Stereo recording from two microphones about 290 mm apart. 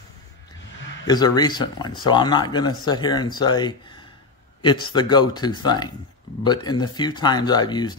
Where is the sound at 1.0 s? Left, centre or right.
Centre.